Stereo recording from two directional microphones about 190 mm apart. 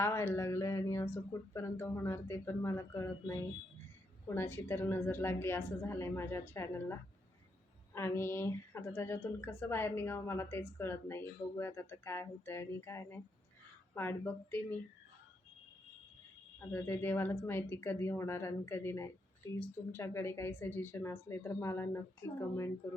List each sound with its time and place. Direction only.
0.0 s a woman's voice: 15° left (ahead or behind)
16.6 s a woman's voice: 10° left (ahead or behind)